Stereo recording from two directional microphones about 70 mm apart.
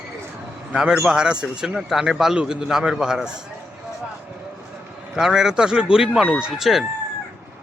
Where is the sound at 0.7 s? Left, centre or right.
Centre.